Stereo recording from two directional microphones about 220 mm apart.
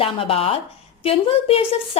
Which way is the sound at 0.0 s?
25° left (ahead or behind).